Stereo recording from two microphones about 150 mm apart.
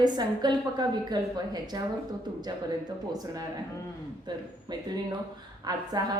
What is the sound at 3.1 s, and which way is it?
A woman's voice, 25° right (ahead or behind).